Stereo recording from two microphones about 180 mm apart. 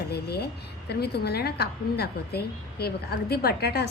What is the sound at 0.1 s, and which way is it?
A woman's voice, 65° left (ahead or behind).